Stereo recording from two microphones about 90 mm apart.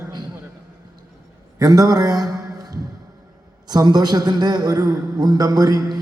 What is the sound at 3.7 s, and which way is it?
A man's voice, 50° right (ahead or behind).